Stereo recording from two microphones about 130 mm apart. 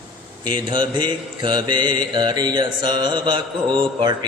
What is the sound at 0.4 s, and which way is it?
Mantra, 35° right (ahead or behind).